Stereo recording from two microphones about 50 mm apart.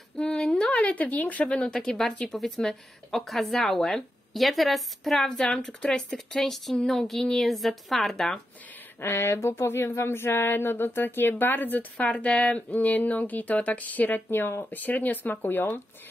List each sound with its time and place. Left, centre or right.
0.2 s a sound: centre
1.5 s a woman's voice: centre
9.0 s speech: left
12.1 s speech: left